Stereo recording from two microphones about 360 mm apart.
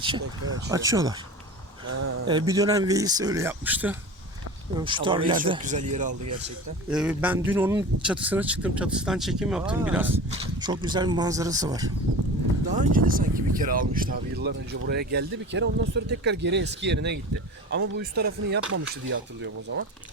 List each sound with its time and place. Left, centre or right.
0.7 s speech: centre
2.2 s speech: centre
6.9 s speech: centre
12.7 s speech: right